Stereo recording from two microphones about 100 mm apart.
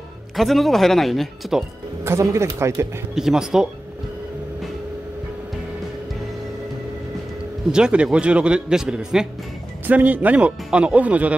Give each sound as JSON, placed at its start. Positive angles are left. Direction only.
{"t": 0.4, "sound": "speech", "side_deg": 0}
{"t": 2.0, "sound": "speech", "side_deg": -30}
{"t": 3.2, "sound": "speech", "side_deg": -5}
{"t": 7.7, "sound": "a man's voice", "side_deg": -10}